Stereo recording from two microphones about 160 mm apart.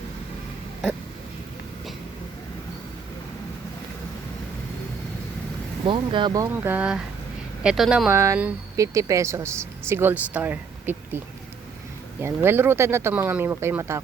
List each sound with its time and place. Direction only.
5.8 s speech: 30° right (ahead or behind)
6.7 s speech: 5° right (ahead or behind)
8.1 s speech: 20° right (ahead or behind)
12.2 s speech: 15° right (ahead or behind)